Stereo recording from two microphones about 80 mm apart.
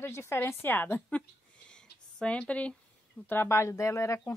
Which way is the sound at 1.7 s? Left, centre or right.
Centre.